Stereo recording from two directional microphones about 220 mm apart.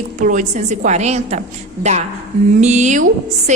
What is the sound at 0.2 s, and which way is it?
A woman's voice, 35° right (ahead or behind).